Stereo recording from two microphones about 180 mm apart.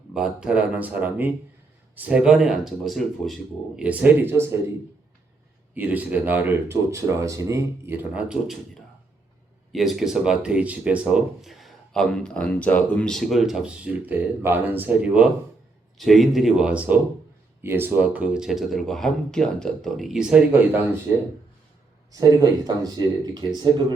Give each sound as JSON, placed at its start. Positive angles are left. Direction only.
{"t": 0.1, "sound": "speech", "side_deg": -5}
{"t": 5.7, "sound": "speech", "side_deg": -10}
{"t": 22.1, "sound": "speech", "side_deg": -20}